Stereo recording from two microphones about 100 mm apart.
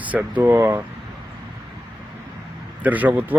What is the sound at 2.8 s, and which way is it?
Speech, 15° right (ahead or behind).